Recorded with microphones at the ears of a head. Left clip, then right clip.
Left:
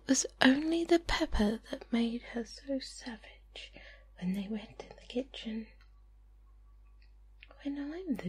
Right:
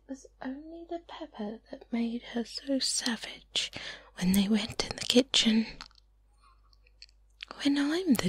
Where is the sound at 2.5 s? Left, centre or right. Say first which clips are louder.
Right 8 dB; right.